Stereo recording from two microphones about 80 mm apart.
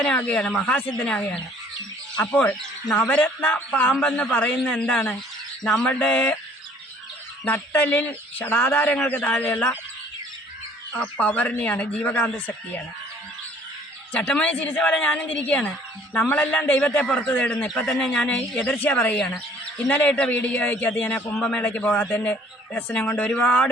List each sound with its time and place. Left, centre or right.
0.0 s a man's voice: centre
2.8 s a man's voice: left
3.1 s a man's voice: centre
7.5 s speech: left
10.9 s a man's voice: centre
14.1 s a man's voice: centre
21.2 s a man's voice: centre
21.5 s a man's voice: centre